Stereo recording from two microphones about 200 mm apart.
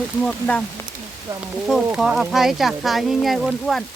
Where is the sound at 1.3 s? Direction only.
15° right (ahead or behind).